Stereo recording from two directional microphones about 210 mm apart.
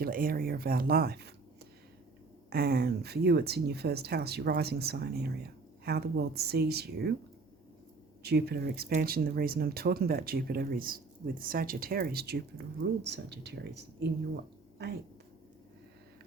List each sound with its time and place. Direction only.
0.0 s speech: 45° right (ahead or behind)
2.5 s speech: 50° right (ahead or behind)
8.2 s speech: 50° right (ahead or behind)